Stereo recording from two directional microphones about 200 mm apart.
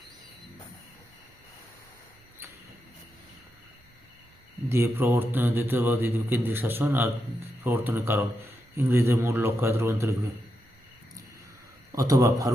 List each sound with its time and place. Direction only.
4.7 s a man's voice: 10° right (ahead or behind)
11.9 s a man's voice: 15° right (ahead or behind)